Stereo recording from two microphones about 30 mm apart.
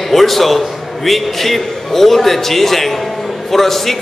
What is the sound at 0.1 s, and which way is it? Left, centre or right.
A man's voice, centre.